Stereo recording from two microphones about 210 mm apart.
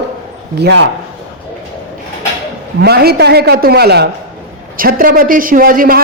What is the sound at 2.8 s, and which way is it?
A woman's voice, 50° right (ahead or behind).